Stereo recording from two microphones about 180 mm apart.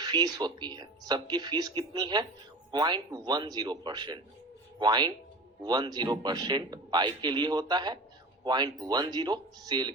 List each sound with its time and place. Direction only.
0.0 s speech: 25° right (ahead or behind)